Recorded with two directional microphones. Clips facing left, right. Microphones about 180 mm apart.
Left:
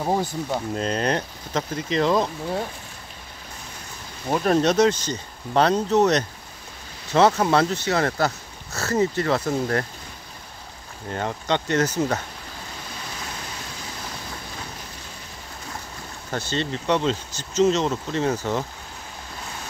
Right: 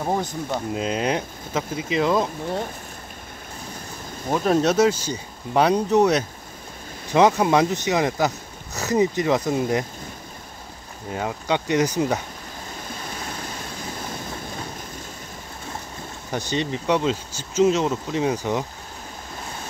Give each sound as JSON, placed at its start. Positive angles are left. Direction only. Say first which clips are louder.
{"t": 0.0, "sound": "speech", "louder": "left 1 dB", "side_deg": 10}
{"t": 0.7, "sound": "speech", "louder": "even", "side_deg": -5}
{"t": 4.3, "sound": "speech", "louder": "even", "side_deg": -5}
{"t": 11.1, "sound": "speech", "louder": "even", "side_deg": -5}
{"t": 16.3, "sound": "speech", "louder": "right 1 dB", "side_deg": -15}